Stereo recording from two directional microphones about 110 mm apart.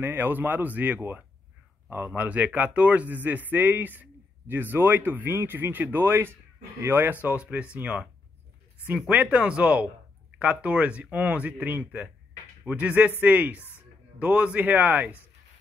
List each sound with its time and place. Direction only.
0.0 s speech: 20° right (ahead or behind)
13.6 s a sound: 20° left (ahead or behind)
14.1 s speech: 10° right (ahead or behind)